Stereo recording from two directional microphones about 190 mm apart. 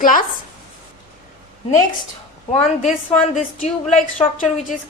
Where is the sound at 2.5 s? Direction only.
35° left (ahead or behind).